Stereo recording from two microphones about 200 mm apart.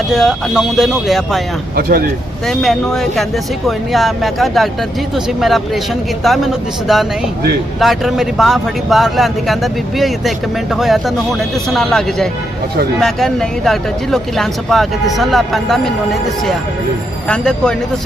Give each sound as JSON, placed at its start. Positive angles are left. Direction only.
{"t": 0.1, "sound": "speech", "side_deg": 0}
{"t": 1.7, "sound": "speech", "side_deg": -50}
{"t": 2.5, "sound": "speech", "side_deg": 0}